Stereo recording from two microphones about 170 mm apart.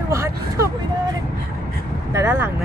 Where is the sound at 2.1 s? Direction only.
15° right (ahead or behind).